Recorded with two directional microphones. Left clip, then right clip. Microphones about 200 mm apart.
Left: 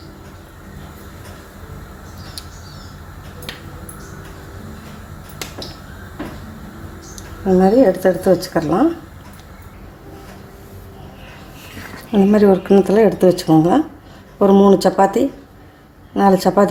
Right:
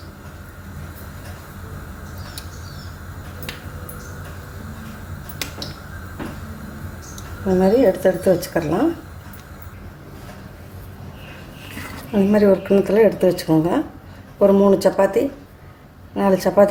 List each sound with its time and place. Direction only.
7.6 s speech: 25° left (ahead or behind)
12.3 s speech: 30° left (ahead or behind)